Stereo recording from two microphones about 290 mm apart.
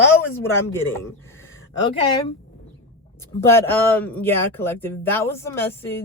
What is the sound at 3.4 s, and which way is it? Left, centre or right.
Speech, centre.